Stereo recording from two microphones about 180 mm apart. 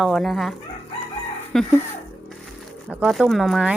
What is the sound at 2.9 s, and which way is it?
Speech, centre (ahead or behind).